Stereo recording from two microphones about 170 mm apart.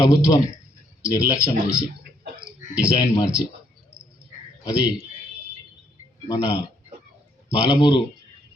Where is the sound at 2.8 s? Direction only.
20° left (ahead or behind).